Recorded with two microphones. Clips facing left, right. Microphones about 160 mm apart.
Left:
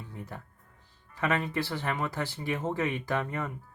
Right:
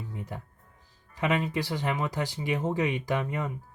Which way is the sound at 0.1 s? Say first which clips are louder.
Right 3 dB; 15° right (ahead or behind).